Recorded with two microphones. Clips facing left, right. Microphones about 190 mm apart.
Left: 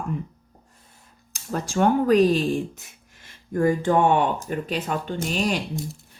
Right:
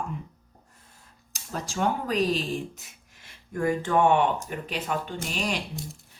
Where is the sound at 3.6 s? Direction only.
35° left (ahead or behind).